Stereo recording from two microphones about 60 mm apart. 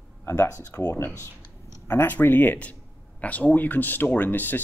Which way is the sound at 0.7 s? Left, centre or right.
Left.